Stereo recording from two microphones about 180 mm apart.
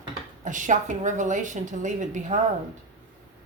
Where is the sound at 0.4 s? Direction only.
45° right (ahead or behind).